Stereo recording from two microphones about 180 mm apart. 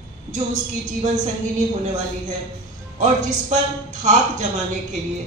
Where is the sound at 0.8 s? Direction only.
40° right (ahead or behind).